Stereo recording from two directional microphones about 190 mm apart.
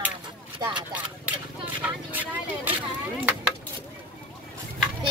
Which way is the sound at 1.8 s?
10° right (ahead or behind).